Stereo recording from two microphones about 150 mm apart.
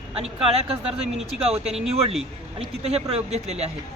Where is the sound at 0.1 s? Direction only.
40° right (ahead or behind).